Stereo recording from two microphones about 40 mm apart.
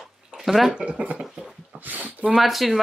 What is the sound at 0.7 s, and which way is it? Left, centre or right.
Speech, right.